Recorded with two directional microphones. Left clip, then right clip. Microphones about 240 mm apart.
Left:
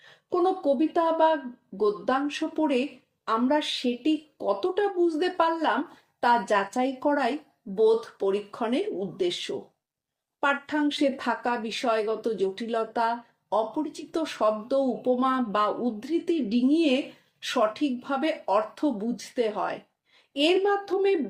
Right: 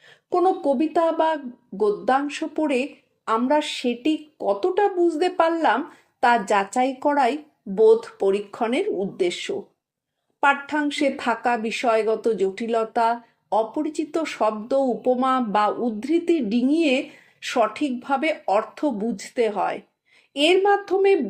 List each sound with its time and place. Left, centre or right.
0.3 s speech: right